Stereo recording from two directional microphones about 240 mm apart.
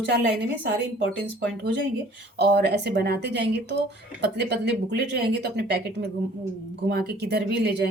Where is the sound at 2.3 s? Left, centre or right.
Right.